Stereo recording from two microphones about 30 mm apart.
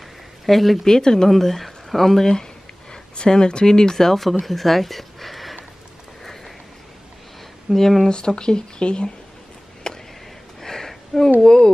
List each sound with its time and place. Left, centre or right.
0.5 s speech: centre
0.8 s speech: centre
1.3 s speech: centre
7.7 s speech: centre
8.4 s speech: left
9.8 s a sound: left
10.6 s a sound: centre
11.4 s speech: left